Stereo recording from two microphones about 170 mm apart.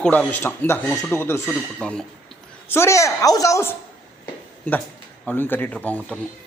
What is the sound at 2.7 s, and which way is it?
Speech, 15° left (ahead or behind).